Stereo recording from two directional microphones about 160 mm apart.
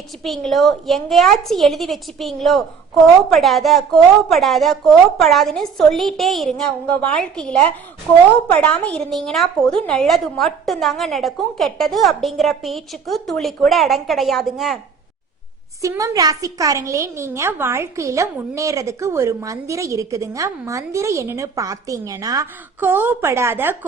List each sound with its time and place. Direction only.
0.2 s a woman's voice: centre (ahead or behind)
15.8 s a woman's voice: 20° right (ahead or behind)